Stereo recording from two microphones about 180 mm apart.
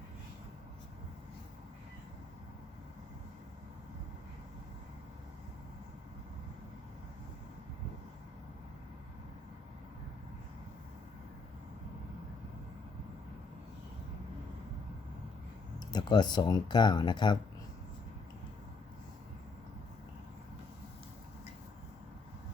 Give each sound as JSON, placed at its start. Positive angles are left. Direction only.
{"t": 15.9, "sound": "speech", "side_deg": 25}